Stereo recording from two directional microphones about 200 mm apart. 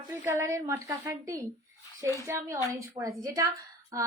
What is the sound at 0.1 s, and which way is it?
A woman's voice, 10° right (ahead or behind).